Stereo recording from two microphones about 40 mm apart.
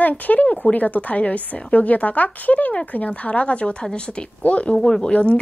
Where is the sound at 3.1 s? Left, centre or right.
Left.